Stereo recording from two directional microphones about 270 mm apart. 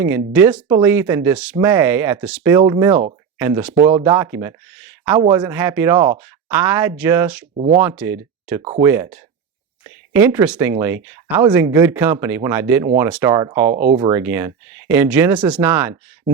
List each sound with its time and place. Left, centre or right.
0.3 s speech: centre
7.5 s speech: right
7.8 s speech: centre
8.6 s speech: right
10.1 s speech: centre